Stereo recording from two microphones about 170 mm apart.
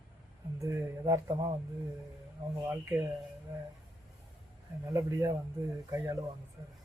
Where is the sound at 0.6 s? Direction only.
20° right (ahead or behind).